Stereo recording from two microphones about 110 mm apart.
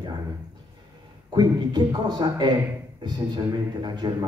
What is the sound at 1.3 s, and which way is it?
A man's voice, 40° right (ahead or behind).